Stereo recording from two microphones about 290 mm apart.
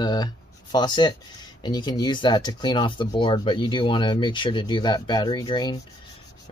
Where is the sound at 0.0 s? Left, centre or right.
Centre.